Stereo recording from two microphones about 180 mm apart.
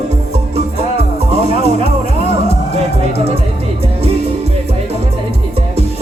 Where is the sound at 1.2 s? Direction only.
35° right (ahead or behind).